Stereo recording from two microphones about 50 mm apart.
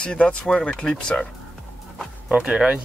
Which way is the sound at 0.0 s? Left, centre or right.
Left.